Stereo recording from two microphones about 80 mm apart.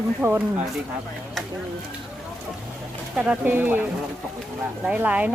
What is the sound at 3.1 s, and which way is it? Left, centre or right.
Speech, centre.